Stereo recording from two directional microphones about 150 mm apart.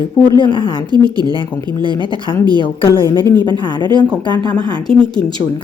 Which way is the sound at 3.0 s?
25° right (ahead or behind).